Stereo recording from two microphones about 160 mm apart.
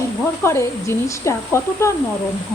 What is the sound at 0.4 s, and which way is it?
Speech, 15° left (ahead or behind).